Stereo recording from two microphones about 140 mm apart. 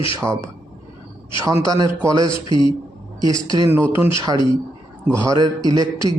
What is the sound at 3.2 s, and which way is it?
Speech, 25° right (ahead or behind).